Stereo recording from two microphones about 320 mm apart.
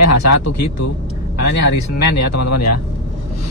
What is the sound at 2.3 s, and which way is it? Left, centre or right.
Speech, left.